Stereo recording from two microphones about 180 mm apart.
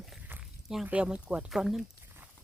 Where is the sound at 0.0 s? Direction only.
5° right (ahead or behind).